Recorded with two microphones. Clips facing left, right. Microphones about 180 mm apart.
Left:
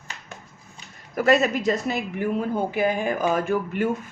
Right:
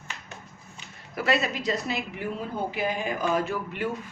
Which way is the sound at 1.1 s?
45° left (ahead or behind).